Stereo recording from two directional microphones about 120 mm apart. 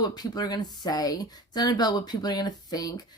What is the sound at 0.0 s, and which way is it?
Speech, 35° left (ahead or behind).